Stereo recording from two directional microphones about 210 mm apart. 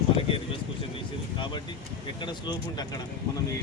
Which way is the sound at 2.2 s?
20° left (ahead or behind).